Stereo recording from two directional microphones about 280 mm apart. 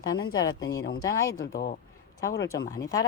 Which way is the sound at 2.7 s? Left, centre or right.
Centre.